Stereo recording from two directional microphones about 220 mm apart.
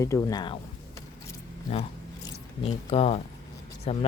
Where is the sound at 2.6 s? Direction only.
25° left (ahead or behind).